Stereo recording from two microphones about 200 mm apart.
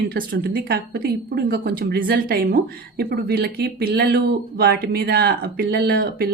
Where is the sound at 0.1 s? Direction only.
50° right (ahead or behind).